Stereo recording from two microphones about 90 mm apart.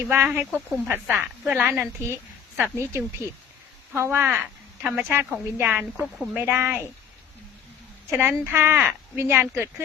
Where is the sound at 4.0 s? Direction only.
25° right (ahead or behind).